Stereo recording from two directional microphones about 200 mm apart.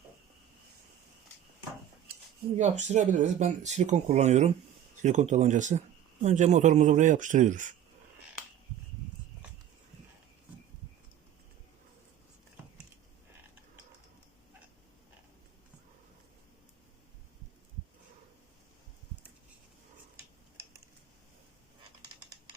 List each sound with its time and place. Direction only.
2.6 s speech: 35° right (ahead or behind)